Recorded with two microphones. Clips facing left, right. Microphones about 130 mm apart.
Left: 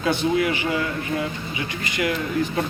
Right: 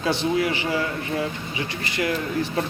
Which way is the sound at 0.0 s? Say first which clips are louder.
Left 1 dB; 30° right (ahead or behind).